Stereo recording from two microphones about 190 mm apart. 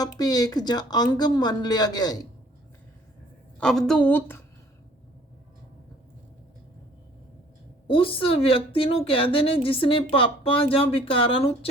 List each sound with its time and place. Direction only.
0.2 s a woman's voice: 20° left (ahead or behind)
3.6 s a woman's voice: centre (ahead or behind)
7.9 s a woman's voice: 30° left (ahead or behind)